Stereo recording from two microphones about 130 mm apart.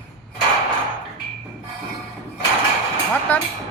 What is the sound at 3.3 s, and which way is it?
Speech, 15° left (ahead or behind).